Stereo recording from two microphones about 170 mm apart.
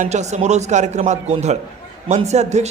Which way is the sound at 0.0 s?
40° right (ahead or behind).